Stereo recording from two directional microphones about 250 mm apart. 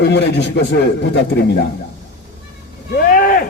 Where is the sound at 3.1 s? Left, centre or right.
Left.